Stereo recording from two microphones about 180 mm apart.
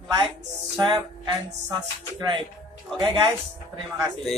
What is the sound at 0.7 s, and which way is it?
Speech, 25° right (ahead or behind).